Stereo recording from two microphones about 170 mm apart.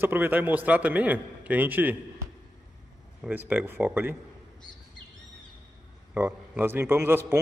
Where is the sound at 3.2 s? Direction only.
10° right (ahead or behind).